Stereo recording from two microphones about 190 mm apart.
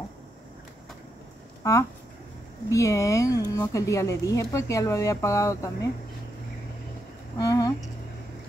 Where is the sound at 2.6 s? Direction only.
15° left (ahead or behind).